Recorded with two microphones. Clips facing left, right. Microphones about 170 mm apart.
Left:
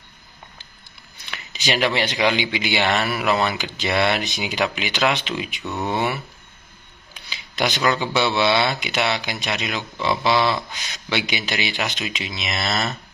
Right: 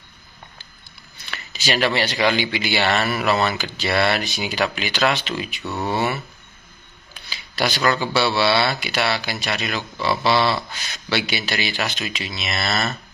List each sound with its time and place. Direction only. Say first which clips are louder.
1.1 s speech: right 1 dB; 15° left (ahead or behind)